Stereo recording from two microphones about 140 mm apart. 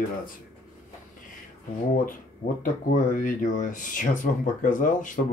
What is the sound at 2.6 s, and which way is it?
Speech, 75° left (ahead or behind).